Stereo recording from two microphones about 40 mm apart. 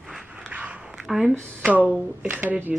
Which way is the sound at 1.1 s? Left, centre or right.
Centre.